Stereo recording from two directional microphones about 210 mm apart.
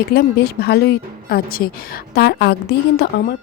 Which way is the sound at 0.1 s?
50° left (ahead or behind).